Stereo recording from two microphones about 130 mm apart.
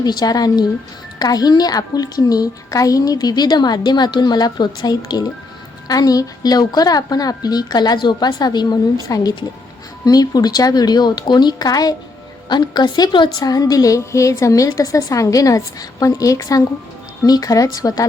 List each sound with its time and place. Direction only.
0.0 s a woman's voice: 30° left (ahead or behind)